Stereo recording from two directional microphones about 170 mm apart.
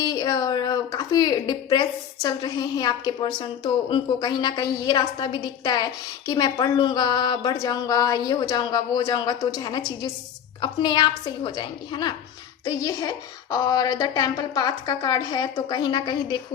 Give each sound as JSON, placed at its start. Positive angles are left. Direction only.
{"t": 0.0, "sound": "a woman's voice", "side_deg": 20}